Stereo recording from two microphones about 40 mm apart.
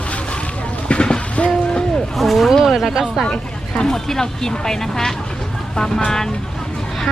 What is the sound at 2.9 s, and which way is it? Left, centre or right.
Speech, centre.